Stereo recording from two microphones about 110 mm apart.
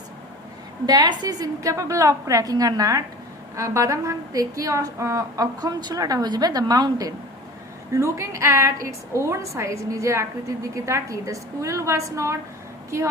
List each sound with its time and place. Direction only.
0.9 s a woman's voice: 35° right (ahead or behind)